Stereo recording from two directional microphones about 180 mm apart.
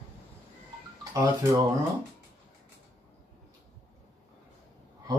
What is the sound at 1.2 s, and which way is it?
Speech, 20° right (ahead or behind).